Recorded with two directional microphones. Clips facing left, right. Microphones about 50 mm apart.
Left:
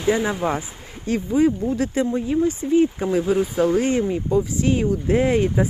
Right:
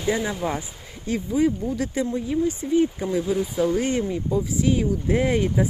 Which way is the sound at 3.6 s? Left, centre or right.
Left.